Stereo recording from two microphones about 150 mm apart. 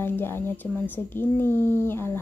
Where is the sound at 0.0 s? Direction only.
15° left (ahead or behind).